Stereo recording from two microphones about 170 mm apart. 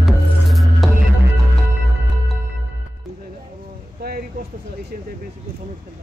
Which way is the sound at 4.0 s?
60° right (ahead or behind).